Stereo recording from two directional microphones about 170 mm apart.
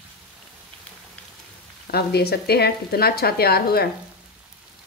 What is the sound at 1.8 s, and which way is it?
Speech, 70° left (ahead or behind).